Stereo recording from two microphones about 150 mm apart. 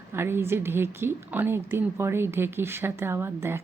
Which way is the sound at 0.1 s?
15° right (ahead or behind).